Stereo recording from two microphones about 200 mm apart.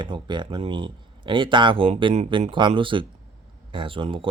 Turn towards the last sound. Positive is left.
turn(degrees=-25)  # may be behind; listen again after turning